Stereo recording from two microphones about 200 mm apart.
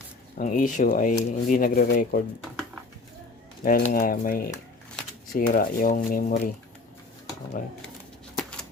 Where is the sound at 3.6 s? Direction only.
45° left (ahead or behind).